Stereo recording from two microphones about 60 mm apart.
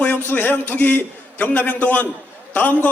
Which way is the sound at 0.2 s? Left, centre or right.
Left.